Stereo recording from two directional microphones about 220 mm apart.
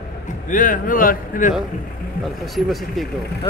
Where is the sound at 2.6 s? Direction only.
Centre (ahead or behind).